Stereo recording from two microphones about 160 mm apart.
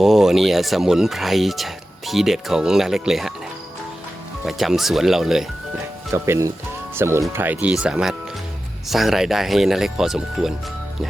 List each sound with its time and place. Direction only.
0.0 s speech: centre (ahead or behind)
4.4 s speech: centre (ahead or behind)
6.1 s speech: 15° right (ahead or behind)